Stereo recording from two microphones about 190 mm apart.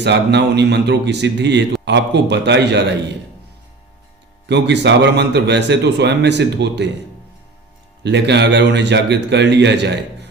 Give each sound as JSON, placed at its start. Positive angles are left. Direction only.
{"t": 0.0, "sound": "a man's voice", "side_deg": -65}
{"t": 4.4, "sound": "a man's voice", "side_deg": -65}
{"t": 8.0, "sound": "a man's voice", "side_deg": -65}